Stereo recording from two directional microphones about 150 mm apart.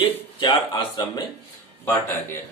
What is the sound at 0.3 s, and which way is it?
Speech, 30° left (ahead or behind).